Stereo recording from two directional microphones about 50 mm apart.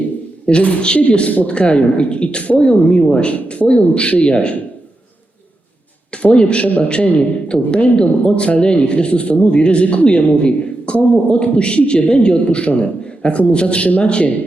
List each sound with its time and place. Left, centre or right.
0.4 s a man's voice: left
6.1 s a man's voice: left